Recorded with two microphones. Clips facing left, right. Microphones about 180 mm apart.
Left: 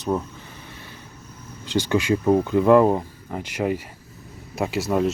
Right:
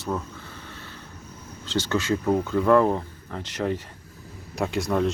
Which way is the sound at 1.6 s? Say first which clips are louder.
Left 4 dB; 15° left (ahead or behind).